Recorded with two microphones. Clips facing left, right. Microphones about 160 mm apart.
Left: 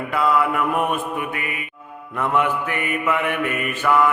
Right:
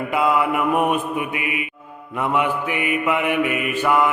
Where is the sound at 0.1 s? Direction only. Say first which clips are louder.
Even; 15° right (ahead or behind).